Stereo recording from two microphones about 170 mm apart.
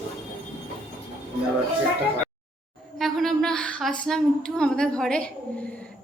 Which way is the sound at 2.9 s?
Centre (ahead or behind).